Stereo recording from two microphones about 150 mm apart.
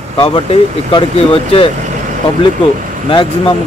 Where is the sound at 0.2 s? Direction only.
35° left (ahead or behind).